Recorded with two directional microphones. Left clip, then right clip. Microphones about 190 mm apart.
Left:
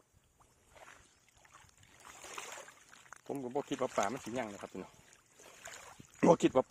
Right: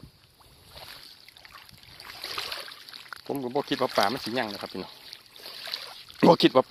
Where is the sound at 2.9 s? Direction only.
15° right (ahead or behind).